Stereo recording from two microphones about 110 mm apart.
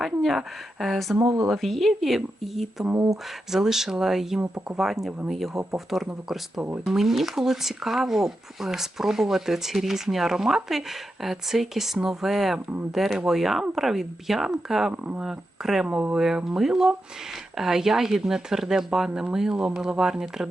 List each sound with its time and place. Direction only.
0.0 s speech: centre (ahead or behind)
4.4 s speech: 15° right (ahead or behind)
4.8 s speech: 5° right (ahead or behind)